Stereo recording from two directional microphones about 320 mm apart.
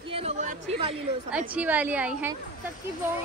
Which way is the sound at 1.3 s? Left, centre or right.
Centre.